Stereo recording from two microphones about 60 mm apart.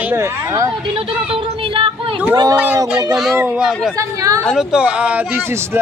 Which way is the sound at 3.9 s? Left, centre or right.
Right.